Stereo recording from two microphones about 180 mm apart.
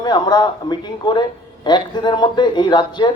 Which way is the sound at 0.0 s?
25° left (ahead or behind).